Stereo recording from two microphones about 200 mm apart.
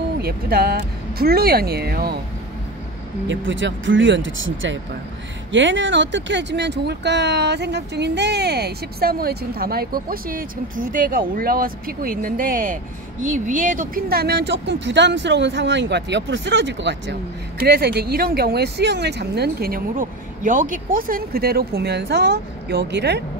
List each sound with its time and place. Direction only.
0.2 s speech: 50° right (ahead or behind)
3.3 s speech: 65° right (ahead or behind)